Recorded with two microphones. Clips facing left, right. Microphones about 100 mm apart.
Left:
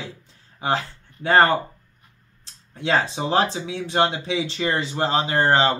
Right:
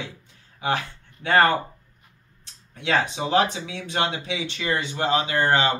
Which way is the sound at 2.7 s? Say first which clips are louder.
Left 2 dB; 30° left (ahead or behind).